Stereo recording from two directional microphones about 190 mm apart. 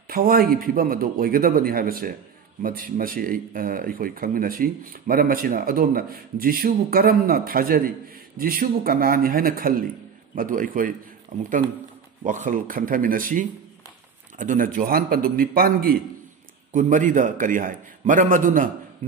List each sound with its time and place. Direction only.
0.1 s speech: 50° right (ahead or behind)